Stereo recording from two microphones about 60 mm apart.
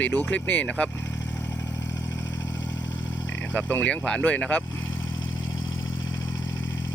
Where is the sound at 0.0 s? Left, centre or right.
Left.